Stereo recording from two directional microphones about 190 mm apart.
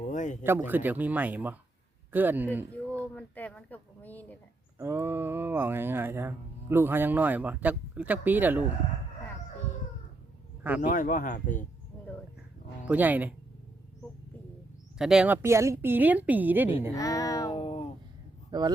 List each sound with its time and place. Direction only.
0.1 s a sound: 40° left (ahead or behind)
0.4 s speech: 10° right (ahead or behind)
3.2 s a woman's voice: 10° left (ahead or behind)
4.8 s speech: 10° right (ahead or behind)
10.8 s speech: 40° left (ahead or behind)
12.9 s speech: 10° right (ahead or behind)
14.9 s speech: 5° right (ahead or behind)
16.9 s a woman's voice: 15° left (ahead or behind)
17.5 s a sound: 30° left (ahead or behind)
18.5 s speech: 20° right (ahead or behind)